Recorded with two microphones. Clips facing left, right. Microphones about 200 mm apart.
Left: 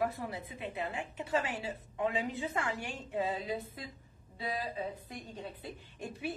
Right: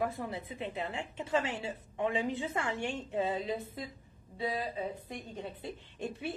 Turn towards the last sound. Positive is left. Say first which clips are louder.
# right 3 dB
turn(degrees=-25)  # may be behind; listen again after turning